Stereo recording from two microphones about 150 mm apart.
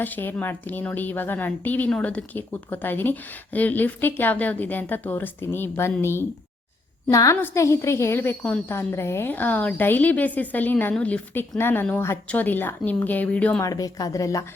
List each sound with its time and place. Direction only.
0.0 s a woman's voice: 15° left (ahead or behind)
13.6 s speech: 25° left (ahead or behind)